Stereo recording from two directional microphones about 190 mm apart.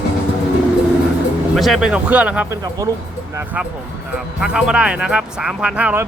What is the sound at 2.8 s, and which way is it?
Speech, 15° right (ahead or behind).